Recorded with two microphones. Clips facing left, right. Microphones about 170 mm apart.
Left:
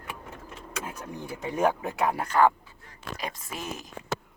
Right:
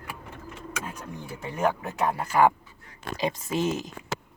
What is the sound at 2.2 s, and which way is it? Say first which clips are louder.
Speech: right 1 dB; 10° right (ahead or behind).